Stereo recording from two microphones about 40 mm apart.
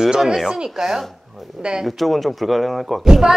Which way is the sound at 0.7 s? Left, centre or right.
Centre.